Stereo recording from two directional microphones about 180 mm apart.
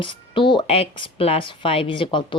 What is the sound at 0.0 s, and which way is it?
Speech, 25° left (ahead or behind).